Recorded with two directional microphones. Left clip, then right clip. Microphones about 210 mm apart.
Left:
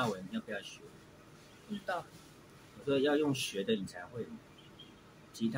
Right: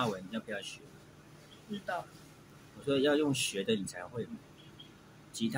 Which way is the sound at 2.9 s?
20° right (ahead or behind).